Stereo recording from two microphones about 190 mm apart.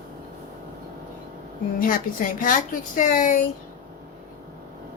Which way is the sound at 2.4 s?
45° left (ahead or behind).